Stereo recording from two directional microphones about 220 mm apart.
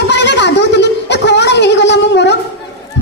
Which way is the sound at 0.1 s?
55° left (ahead or behind).